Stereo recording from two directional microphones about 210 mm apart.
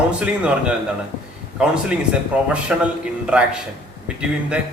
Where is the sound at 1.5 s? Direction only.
5° right (ahead or behind).